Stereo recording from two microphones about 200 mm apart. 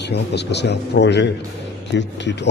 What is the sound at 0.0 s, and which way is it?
Speech, 60° left (ahead or behind).